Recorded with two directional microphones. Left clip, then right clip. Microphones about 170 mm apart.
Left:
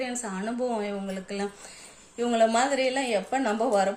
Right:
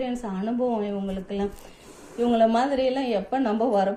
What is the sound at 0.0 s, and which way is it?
A woman's voice, 10° left (ahead or behind).